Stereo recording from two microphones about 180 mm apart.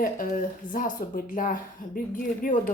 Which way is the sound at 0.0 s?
50° left (ahead or behind).